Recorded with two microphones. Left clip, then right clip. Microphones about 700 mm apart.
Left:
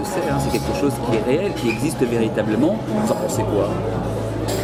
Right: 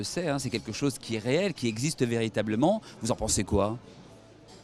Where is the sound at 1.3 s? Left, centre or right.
Right.